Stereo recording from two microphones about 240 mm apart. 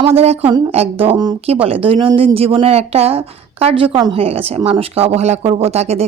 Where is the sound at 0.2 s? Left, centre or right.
Right.